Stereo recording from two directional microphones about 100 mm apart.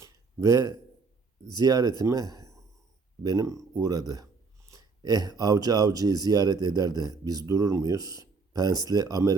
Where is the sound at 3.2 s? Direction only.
35° right (ahead or behind).